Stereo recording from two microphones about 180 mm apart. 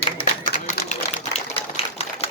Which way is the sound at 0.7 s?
40° left (ahead or behind).